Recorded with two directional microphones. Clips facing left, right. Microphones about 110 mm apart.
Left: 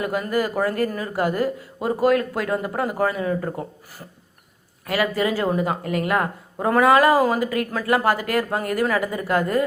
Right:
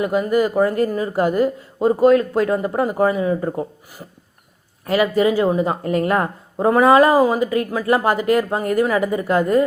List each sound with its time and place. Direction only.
0.0 s a woman's voice: 20° right (ahead or behind)
4.9 s a woman's voice: 25° right (ahead or behind)